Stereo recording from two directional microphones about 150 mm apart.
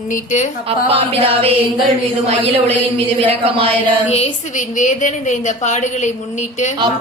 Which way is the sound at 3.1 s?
40° right (ahead or behind).